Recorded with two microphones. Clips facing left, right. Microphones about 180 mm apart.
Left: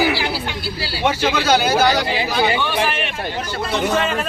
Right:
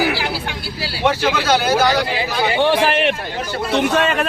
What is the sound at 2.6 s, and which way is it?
Speech, 90° right.